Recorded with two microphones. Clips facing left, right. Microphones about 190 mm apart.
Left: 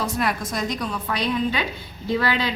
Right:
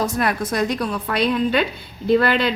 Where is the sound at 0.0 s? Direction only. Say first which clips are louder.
Right 3 dB; 55° right (ahead or behind).